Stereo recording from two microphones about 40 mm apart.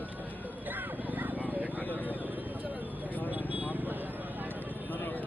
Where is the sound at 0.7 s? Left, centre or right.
Right.